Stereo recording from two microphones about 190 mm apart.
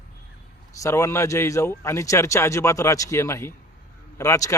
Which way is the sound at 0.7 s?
15° left (ahead or behind).